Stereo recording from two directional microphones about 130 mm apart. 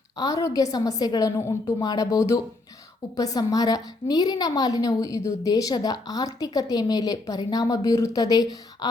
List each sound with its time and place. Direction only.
0.2 s a woman's voice: 25° left (ahead or behind)